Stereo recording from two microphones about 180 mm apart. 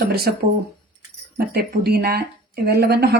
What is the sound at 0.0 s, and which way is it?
Speech, 60° right (ahead or behind).